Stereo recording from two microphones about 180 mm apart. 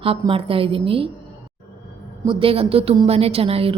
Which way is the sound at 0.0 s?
30° right (ahead or behind).